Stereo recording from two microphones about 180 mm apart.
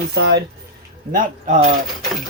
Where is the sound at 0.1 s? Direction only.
65° right (ahead or behind).